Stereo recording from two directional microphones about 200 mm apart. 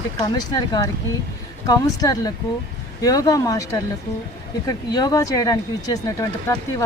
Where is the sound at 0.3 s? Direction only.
20° left (ahead or behind).